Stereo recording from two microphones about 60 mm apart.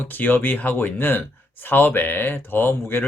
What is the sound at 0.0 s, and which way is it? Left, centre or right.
Speech, left.